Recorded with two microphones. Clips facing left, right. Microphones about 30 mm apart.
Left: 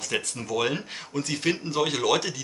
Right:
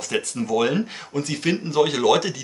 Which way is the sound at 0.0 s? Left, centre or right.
Centre.